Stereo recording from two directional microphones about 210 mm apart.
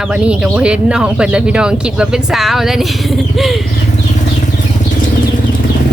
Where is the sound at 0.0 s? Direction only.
5° right (ahead or behind).